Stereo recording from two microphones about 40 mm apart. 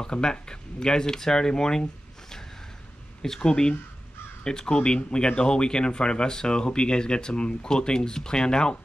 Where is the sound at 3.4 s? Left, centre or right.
Centre.